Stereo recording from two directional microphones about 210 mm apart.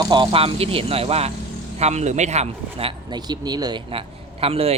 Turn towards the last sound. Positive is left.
turn(degrees=-30)  # may be behind; listen again after turning